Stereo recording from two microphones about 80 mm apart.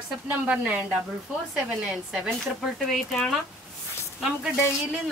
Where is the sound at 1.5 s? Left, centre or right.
Centre.